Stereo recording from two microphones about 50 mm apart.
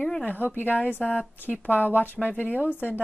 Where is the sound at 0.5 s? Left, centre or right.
Left.